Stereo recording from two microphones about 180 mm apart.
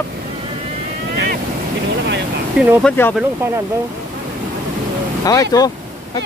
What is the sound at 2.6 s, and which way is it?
Speech, centre (ahead or behind).